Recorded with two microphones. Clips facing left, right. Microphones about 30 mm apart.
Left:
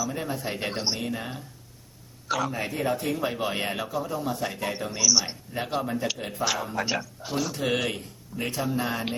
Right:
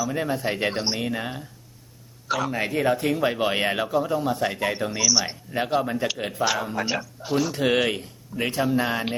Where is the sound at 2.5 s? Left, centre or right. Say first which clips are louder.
Right 5 dB; right.